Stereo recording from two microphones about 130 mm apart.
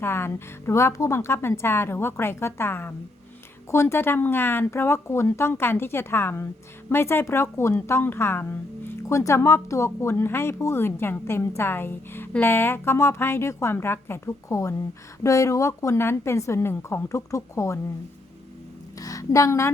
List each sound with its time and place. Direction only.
0.0 s speech: 20° left (ahead or behind)
18.9 s a woman's voice: 25° left (ahead or behind)